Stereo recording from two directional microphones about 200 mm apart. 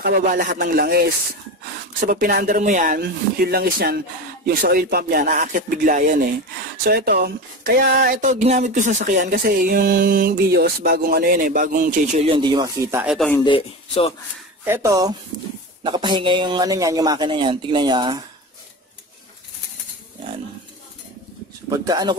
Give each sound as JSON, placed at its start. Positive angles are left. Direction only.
{"t": 0.0, "sound": "speech", "side_deg": -40}
{"t": 12.3, "sound": "a man's voice", "side_deg": -25}
{"t": 13.1, "sound": "speech", "side_deg": 0}
{"t": 13.4, "sound": "speech", "side_deg": 25}
{"t": 14.6, "sound": "a man's voice", "side_deg": -15}
{"t": 21.6, "sound": "a man's voice", "side_deg": -20}